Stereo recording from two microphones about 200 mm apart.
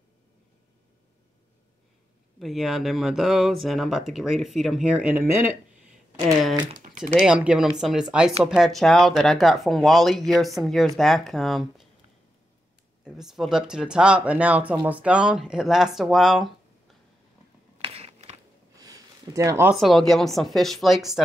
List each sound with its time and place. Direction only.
2.3 s speech: centre (ahead or behind)
7.2 s speech: 5° right (ahead or behind)
13.0 s speech: centre (ahead or behind)
17.7 s biting: 30° right (ahead or behind)
18.8 s a sound: 15° right (ahead or behind)
19.7 s speech: centre (ahead or behind)